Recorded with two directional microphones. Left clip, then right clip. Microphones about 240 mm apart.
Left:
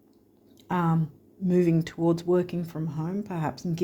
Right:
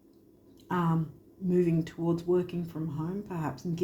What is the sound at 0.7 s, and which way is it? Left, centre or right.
Speech, left.